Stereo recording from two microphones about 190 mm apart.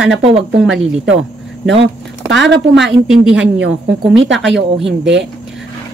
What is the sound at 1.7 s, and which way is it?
Speech, 70° right (ahead or behind).